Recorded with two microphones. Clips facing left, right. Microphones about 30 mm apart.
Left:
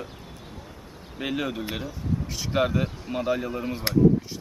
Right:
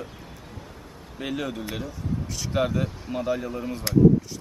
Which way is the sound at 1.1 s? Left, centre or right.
Centre.